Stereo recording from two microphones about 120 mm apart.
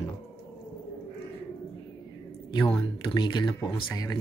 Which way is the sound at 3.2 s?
40° left (ahead or behind).